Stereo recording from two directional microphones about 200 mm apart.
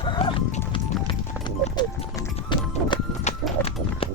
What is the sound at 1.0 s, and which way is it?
Music, 25° left (ahead or behind).